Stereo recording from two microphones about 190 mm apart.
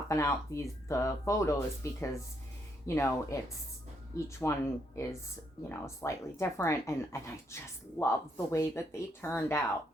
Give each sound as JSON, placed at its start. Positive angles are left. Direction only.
{"t": 0.1, "sound": "speech", "side_deg": 15}